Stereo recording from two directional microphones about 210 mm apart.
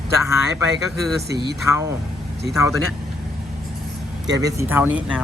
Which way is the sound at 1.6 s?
15° right (ahead or behind).